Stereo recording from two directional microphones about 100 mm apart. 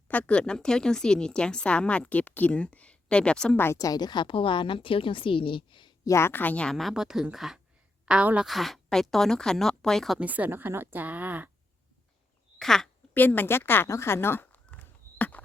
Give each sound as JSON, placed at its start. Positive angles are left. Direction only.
{"t": 0.1, "sound": "a woman's voice", "side_deg": 15}
{"t": 3.8, "sound": "a woman's voice", "side_deg": 40}
{"t": 6.1, "sound": "a woman's voice", "side_deg": 25}
{"t": 8.4, "sound": "speech", "side_deg": 0}
{"t": 10.2, "sound": "speech", "side_deg": -15}
{"t": 12.5, "sound": "speech", "side_deg": 5}
{"t": 13.1, "sound": "speech", "side_deg": 20}